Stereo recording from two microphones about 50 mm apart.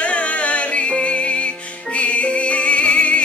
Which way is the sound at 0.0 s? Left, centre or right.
Left.